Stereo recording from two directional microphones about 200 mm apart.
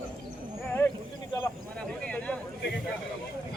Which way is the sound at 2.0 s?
5° left (ahead or behind).